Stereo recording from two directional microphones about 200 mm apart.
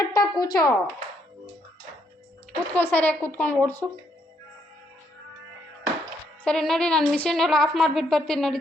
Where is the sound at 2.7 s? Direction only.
10° left (ahead or behind).